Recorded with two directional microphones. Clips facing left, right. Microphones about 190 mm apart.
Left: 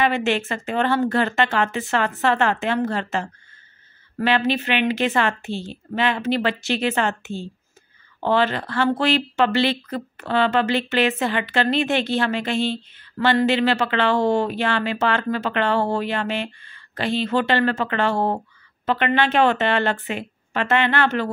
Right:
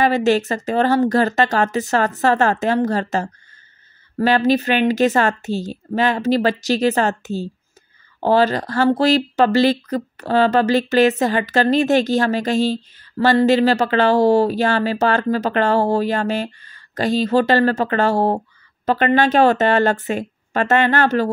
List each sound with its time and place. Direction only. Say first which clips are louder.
0.0 s speech: right 5 dB; 40° right (ahead or behind)